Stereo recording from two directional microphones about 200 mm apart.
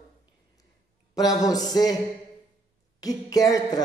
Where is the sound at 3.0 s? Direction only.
20° left (ahead or behind).